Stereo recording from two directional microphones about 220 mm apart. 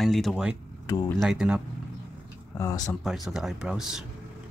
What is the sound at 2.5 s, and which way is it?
Speech, 15° left (ahead or behind).